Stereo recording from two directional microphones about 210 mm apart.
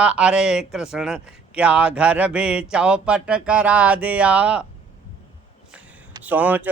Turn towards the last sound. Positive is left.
turn(degrees=-5)  # may be behind; listen again after turning